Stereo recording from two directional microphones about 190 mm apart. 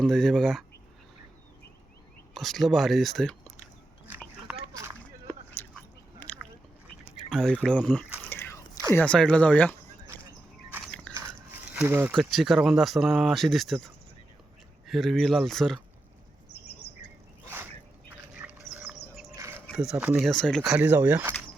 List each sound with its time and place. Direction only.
0.0 s speech: 5° left (ahead or behind)
2.3 s speech: centre (ahead or behind)
4.5 s a sound: 10° right (ahead or behind)
5.3 s biting: 10° left (ahead or behind)
7.3 s drip: centre (ahead or behind)
9.0 s speech: 5° left (ahead or behind)
11.1 s a sound: 15° right (ahead or behind)
12.1 s speech: centre (ahead or behind)
17.4 s a sound: 10° right (ahead or behind)
19.7 s speech: 5° right (ahead or behind)
20.7 s speech: 10° right (ahead or behind)